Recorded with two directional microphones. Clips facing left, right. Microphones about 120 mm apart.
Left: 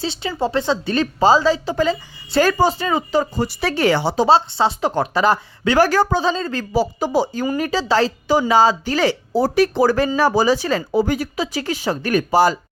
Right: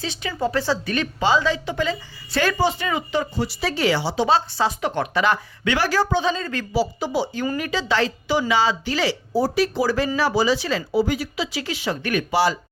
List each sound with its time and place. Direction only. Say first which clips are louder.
0.0 s speech: left 3 dB; 30° left (ahead or behind)
0.9 s a woman's voice: left 7 dB; 35° left (ahead or behind)
4.3 s a woman's voice: left 5 dB; 30° left (ahead or behind)
6.7 s a woman's voice: left 4 dB; 45° left (ahead or behind)